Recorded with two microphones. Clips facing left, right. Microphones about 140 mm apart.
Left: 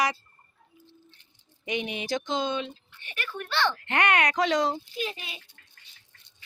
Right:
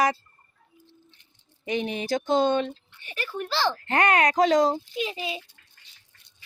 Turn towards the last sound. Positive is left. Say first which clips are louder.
# right 4 dB
turn(degrees=-25)  # may be behind; listen again after turning